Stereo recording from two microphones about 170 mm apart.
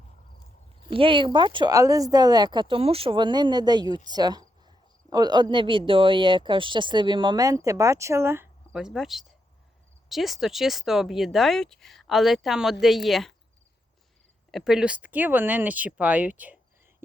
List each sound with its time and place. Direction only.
0.9 s speech: 30° right (ahead or behind); by 13.3 s centre (ahead or behind)
14.5 s speech: 5° right (ahead or behind)